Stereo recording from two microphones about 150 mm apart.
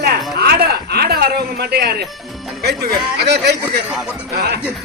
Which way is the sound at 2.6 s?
90° right.